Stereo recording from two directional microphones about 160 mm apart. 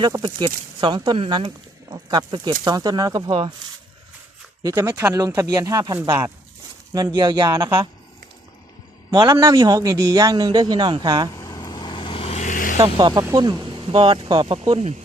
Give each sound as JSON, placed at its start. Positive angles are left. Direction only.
{"t": 0.0, "sound": "speech", "side_deg": -25}
{"t": 4.7, "sound": "speech", "side_deg": -20}
{"t": 9.1, "sound": "speech", "side_deg": -20}
{"t": 11.3, "sound": "vehicle", "side_deg": 20}
{"t": 13.0, "sound": "speech", "side_deg": -30}